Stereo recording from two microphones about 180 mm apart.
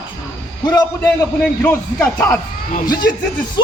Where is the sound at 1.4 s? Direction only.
10° left (ahead or behind).